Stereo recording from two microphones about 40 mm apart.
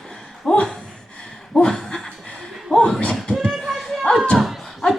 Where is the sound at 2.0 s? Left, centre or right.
Left.